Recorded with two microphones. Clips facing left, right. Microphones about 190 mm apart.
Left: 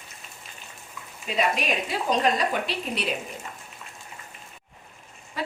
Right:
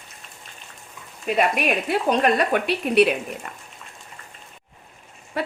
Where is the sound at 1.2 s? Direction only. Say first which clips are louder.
Right 5 dB; 55° right (ahead or behind).